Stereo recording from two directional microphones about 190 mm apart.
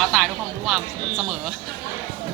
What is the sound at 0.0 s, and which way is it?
Speech, centre (ahead or behind).